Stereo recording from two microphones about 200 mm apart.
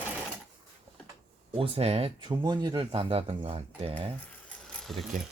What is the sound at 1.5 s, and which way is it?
Speech, 30° right (ahead or behind).